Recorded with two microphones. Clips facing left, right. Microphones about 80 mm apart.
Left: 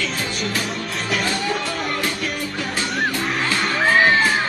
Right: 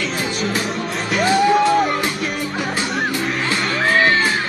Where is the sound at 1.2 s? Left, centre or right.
Centre.